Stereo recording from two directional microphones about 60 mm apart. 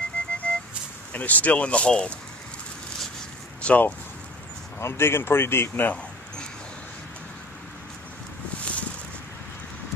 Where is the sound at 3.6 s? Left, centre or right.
Left.